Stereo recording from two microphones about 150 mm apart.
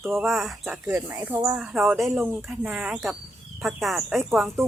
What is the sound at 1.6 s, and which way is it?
Speech, 5° right (ahead or behind).